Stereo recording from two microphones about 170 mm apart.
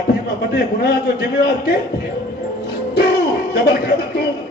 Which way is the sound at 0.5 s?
70° left (ahead or behind).